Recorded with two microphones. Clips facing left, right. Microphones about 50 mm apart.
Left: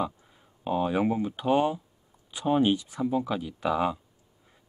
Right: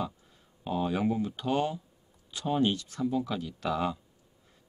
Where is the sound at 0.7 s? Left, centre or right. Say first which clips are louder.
Left 3 dB; centre.